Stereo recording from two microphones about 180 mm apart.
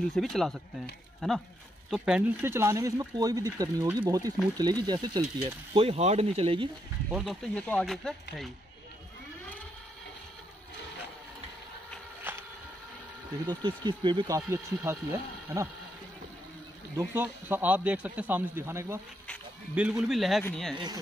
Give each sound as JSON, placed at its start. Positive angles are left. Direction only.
{"t": 0.1, "sound": "speech", "side_deg": 0}
{"t": 7.1, "sound": "speech", "side_deg": -5}
{"t": 7.5, "sound": "speech", "side_deg": 5}
{"t": 12.2, "sound": "a sound", "side_deg": -10}
{"t": 13.5, "sound": "speech", "side_deg": -25}
{"t": 16.9, "sound": "speech", "side_deg": -10}
{"t": 20.7, "sound": "speech", "side_deg": -25}